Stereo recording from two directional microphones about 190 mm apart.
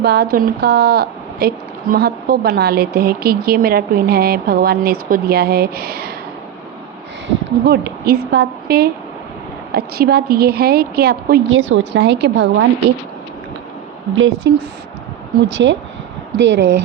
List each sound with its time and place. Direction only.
0.0 s a woman's voice: 55° right (ahead or behind)
7.6 s a woman's voice: 60° right (ahead or behind)
11.5 s a woman's voice: 90° right; by 12.6 s 65° right (ahead or behind)
14.2 s speech: 90° right
15.4 s a woman's voice: 75° right (ahead or behind)